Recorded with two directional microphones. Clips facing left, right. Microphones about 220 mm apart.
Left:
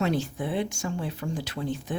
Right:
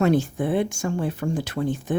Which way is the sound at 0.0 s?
50° right (ahead or behind).